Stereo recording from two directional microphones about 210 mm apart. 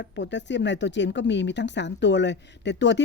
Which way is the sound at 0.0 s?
55° left (ahead or behind).